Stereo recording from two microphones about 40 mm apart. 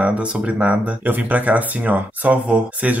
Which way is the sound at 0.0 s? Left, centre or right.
Right.